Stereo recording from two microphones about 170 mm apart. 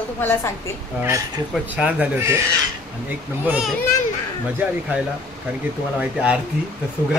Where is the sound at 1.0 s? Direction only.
20° right (ahead or behind).